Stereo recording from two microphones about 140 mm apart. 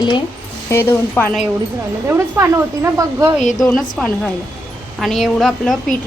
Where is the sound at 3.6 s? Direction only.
5° left (ahead or behind).